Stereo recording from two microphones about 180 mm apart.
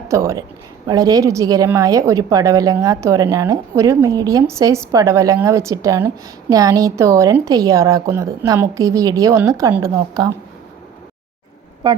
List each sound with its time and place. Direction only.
0.1 s a woman's voice: 15° right (ahead or behind)
11.8 s a woman's voice: 25° right (ahead or behind)